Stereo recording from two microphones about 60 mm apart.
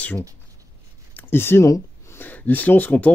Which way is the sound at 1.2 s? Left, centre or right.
Left.